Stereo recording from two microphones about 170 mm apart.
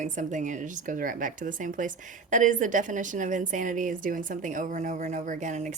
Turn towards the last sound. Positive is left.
turn(degrees=-45)  # may be behind; listen again after turning